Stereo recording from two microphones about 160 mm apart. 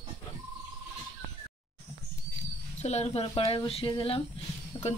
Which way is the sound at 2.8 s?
40° left (ahead or behind).